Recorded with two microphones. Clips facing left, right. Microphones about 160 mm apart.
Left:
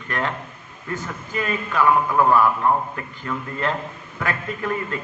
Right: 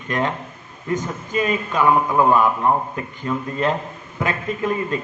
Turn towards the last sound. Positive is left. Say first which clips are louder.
# right 4 dB
turn(degrees=-20)  # may be behind; listen again after turning